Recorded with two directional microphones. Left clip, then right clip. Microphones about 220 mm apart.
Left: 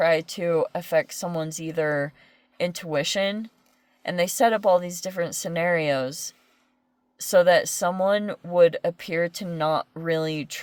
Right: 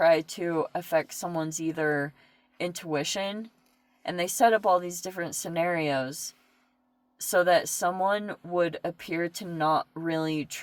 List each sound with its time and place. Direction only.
0.0 s speech: 50° left (ahead or behind)
7.2 s speech: 50° left (ahead or behind)